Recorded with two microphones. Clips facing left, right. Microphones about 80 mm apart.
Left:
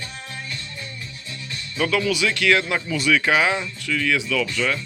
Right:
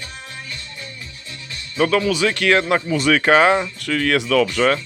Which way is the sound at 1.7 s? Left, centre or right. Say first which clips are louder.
Right 4 dB; right.